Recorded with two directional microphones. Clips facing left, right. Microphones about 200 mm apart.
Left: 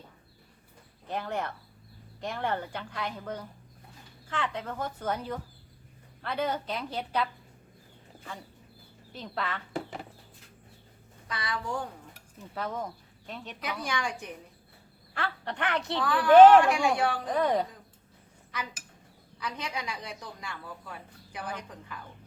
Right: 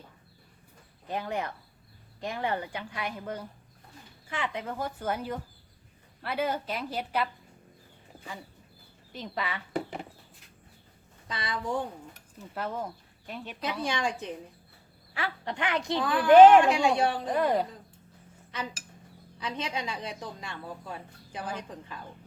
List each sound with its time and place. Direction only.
1.0 s a woman's voice: 10° right (ahead or behind)
9.1 s speech: 5° right (ahead or behind)
11.3 s a woman's voice: 25° right (ahead or behind)
12.5 s speech: 5° right (ahead or behind)
13.6 s a woman's voice: 25° right (ahead or behind)
15.1 s a woman's voice: 10° right (ahead or behind)
17.2 s a woman's voice: 5° right (ahead or behind)
19.4 s a woman's voice: 25° right (ahead or behind)